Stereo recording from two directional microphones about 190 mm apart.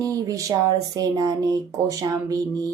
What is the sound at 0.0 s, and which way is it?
Speech, 20° right (ahead or behind).